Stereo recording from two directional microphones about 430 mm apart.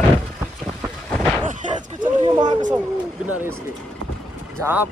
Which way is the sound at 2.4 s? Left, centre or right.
Centre.